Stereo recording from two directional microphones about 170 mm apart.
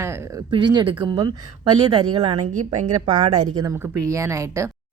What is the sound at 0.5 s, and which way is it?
Speech, 25° right (ahead or behind).